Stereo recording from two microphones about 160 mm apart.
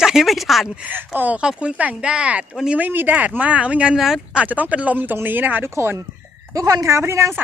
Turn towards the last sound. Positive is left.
turn(degrees=-15)  # may be behind; listen again after turning